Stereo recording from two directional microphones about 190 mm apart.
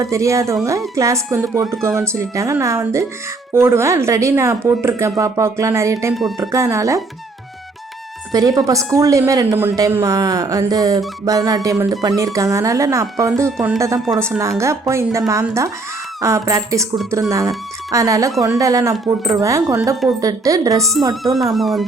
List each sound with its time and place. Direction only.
0.0 s a woman's voice: 15° right (ahead or behind)
8.3 s a woman's voice: 20° right (ahead or behind)
11.3 s music: 20° right (ahead or behind)
12.0 s a woman's voice: 15° right (ahead or behind)
21.0 s music: 20° right (ahead or behind)
21.3 s speech: centre (ahead or behind)